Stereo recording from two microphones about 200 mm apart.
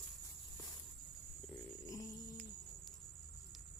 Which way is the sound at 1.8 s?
15° left (ahead or behind).